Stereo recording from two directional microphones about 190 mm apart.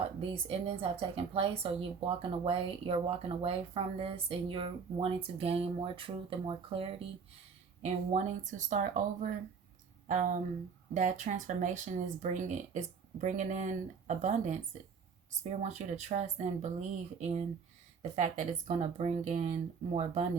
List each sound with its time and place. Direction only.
0.2 s speech: 30° right (ahead or behind)